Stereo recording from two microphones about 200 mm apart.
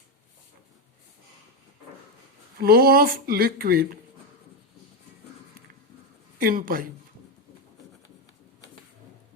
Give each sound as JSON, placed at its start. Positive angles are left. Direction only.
{"t": 2.6, "sound": "speech", "side_deg": -50}
{"t": 6.4, "sound": "speech", "side_deg": -45}